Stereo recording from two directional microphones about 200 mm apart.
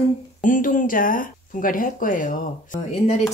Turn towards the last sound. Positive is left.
turn(degrees=40)  # may be behind; listen again after turning